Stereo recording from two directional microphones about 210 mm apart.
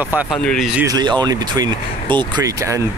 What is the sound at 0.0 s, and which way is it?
Speech, 5° right (ahead or behind).